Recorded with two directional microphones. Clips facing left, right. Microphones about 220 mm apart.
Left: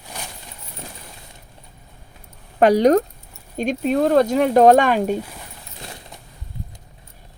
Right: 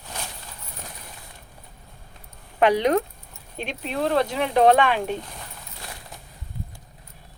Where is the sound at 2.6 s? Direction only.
40° left (ahead or behind).